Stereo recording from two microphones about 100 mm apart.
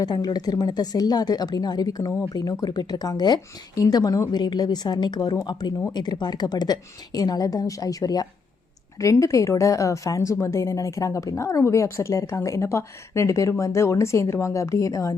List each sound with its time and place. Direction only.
0.0 s a woman's voice: 40° left (ahead or behind)